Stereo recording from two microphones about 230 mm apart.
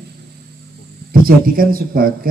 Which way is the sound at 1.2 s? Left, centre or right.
Right.